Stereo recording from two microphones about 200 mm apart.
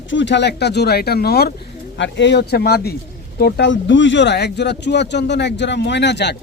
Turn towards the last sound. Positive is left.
turn(degrees=60)  # may be behind; listen again after turning